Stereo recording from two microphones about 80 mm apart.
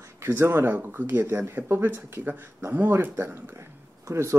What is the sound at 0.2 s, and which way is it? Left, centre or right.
A man's voice, right.